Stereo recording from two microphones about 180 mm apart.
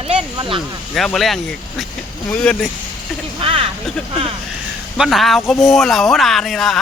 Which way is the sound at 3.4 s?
30° right (ahead or behind).